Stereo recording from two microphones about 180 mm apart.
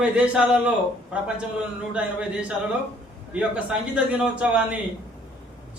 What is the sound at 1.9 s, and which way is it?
A man's voice, 5° right (ahead or behind).